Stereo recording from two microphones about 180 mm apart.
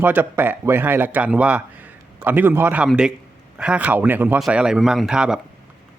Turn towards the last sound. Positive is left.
turn(degrees=-5)  # may be behind; listen again after turning